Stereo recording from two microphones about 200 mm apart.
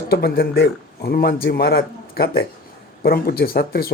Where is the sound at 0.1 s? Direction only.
50° left (ahead or behind).